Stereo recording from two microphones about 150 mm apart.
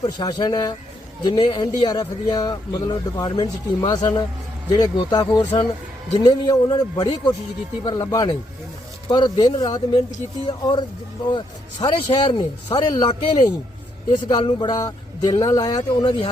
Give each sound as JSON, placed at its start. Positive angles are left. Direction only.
{"t": 0.0, "sound": "a man's voice", "side_deg": 30}